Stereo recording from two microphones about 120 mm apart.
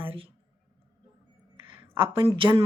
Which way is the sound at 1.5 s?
45° right (ahead or behind).